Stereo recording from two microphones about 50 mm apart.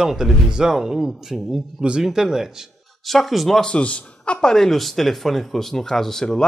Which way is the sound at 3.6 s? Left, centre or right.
Left.